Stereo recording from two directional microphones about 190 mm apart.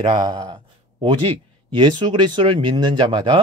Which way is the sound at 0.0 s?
20° right (ahead or behind).